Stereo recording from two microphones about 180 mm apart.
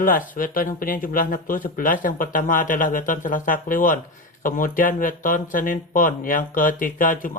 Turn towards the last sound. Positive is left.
turn(degrees=50)  # may be behind; listen again after turning